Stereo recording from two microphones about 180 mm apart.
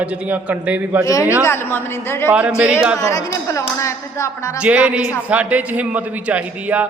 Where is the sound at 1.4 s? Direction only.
15° left (ahead or behind).